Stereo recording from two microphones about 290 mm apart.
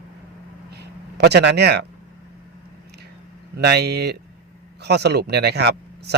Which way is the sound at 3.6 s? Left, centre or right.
Right.